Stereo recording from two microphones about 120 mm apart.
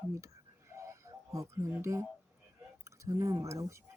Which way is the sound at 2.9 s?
25° right (ahead or behind).